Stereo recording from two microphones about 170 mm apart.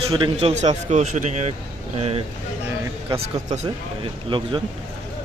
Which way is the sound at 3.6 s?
30° right (ahead or behind).